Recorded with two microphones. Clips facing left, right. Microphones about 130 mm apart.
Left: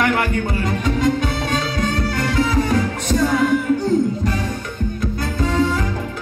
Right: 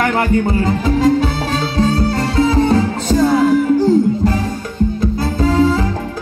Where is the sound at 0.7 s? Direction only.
30° right (ahead or behind).